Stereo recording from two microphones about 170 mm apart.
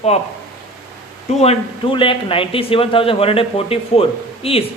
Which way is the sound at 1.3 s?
35° left (ahead or behind).